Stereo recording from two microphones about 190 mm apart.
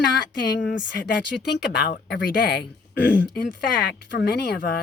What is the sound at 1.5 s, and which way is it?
Speech, 60° left (ahead or behind).